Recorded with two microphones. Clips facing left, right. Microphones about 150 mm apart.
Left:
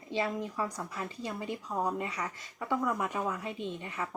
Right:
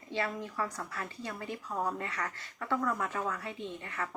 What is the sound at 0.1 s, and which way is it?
Speech, 15° left (ahead or behind).